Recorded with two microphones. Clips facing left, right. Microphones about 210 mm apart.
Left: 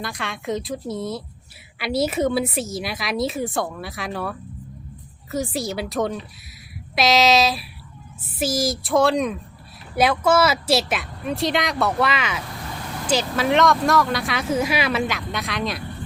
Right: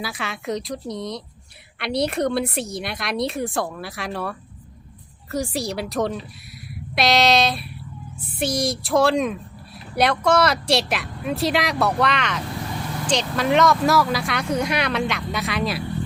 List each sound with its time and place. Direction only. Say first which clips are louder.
0.0 s speech: even; 5° right (ahead or behind)